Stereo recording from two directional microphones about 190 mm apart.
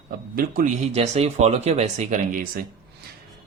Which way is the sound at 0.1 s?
50° right (ahead or behind).